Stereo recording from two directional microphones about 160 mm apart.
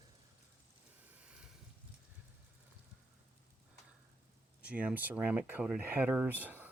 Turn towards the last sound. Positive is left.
turn(degrees=-10)  # may be behind; listen again after turning